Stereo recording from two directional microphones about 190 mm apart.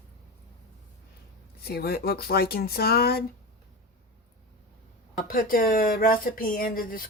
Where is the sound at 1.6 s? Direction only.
55° left (ahead or behind).